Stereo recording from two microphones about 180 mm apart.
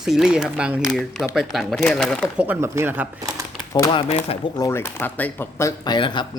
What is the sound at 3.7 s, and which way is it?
Speech, 20° left (ahead or behind).